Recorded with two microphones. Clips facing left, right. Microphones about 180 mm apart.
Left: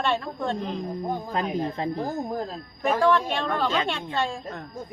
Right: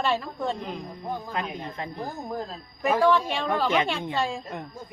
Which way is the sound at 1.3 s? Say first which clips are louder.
Left 5 dB; 35° left (ahead or behind).